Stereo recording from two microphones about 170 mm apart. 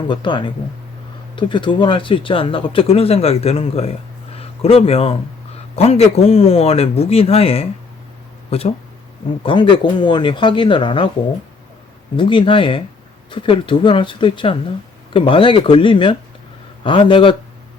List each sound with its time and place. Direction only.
0.1 s speech: 30° left (ahead or behind)
12.1 s speech: 30° left (ahead or behind)